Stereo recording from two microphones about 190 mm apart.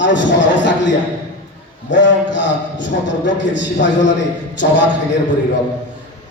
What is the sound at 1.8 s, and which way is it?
A man's voice, 70° left (ahead or behind).